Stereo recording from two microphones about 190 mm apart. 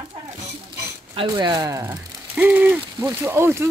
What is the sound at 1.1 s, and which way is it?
Speech, 25° right (ahead or behind).